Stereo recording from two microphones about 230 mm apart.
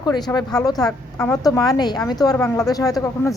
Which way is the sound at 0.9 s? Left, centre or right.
Centre.